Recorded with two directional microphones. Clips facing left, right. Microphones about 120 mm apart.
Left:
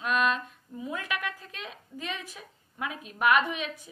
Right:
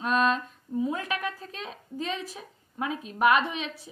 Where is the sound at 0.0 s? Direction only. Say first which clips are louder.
Right 2 dB; 35° right (ahead or behind).